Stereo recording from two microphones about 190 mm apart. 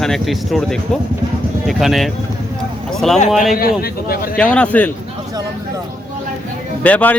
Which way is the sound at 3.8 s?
55° left (ahead or behind).